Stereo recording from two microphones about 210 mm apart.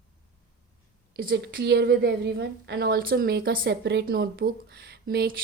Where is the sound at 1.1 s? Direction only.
50° right (ahead or behind).